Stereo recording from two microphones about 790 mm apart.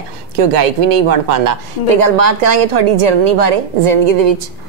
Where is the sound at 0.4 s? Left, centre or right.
Right.